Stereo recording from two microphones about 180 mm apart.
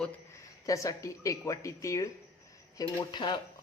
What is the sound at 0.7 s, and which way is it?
Speech, 20° left (ahead or behind).